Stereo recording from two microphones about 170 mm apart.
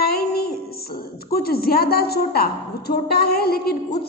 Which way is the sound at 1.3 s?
65° left (ahead or behind).